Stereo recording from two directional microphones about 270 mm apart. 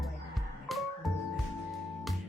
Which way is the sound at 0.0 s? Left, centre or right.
Centre.